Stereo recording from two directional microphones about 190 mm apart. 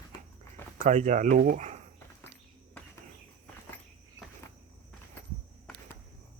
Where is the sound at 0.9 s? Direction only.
40° right (ahead or behind).